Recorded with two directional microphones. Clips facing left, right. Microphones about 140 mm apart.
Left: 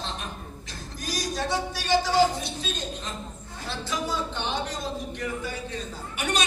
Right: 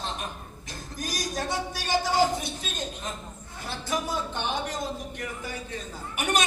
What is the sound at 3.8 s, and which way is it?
Speech, 50° right (ahead or behind).